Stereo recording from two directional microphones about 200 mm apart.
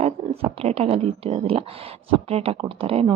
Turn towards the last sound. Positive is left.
turn(degrees=-30)  # may be behind; listen again after turning